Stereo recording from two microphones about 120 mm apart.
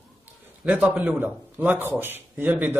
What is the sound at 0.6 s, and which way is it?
Speech, 10° right (ahead or behind).